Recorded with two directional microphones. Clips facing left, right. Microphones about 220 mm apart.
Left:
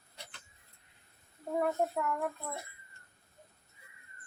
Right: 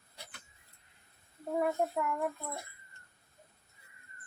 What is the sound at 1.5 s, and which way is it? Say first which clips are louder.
Speech: even; 5° right (ahead or behind).